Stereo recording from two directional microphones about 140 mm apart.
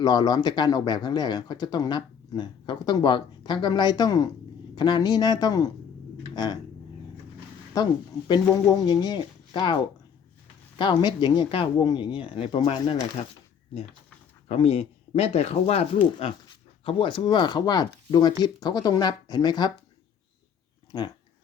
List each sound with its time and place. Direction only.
0.0 s speech: 30° left (ahead or behind)
6.3 s a sound: 30° left (ahead or behind)
8.9 s speech: 30° left (ahead or behind)
14.4 s speech: 45° left (ahead or behind)
16.8 s speech: 35° left (ahead or behind)
20.9 s speech: 30° left (ahead or behind)